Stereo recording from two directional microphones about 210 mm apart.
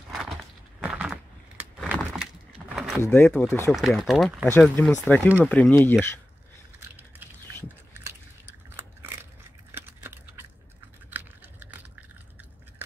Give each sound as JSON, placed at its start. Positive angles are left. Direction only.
{"t": 0.7, "sound": "a sound", "side_deg": -5}
{"t": 3.0, "sound": "speech", "side_deg": 10}
{"t": 3.7, "sound": "speech", "side_deg": 0}
{"t": 7.0, "sound": "biting", "side_deg": -10}
{"t": 10.0, "sound": "a sound", "side_deg": -10}
{"t": 11.1, "sound": "typing", "side_deg": -10}